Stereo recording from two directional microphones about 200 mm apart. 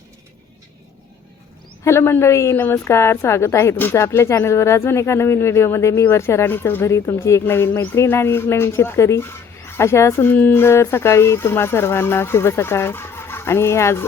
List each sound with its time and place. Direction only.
1.8 s a woman's voice: 15° left (ahead or behind)